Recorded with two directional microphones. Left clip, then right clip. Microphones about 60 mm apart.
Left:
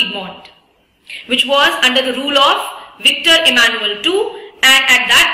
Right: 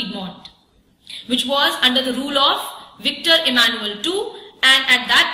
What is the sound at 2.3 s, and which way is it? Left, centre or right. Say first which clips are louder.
Speech: left 5 dB; centre.